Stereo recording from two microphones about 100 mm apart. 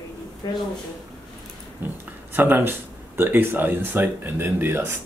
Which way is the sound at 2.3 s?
20° right (ahead or behind).